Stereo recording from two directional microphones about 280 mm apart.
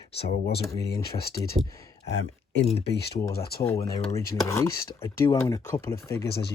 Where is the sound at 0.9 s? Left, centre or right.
Left.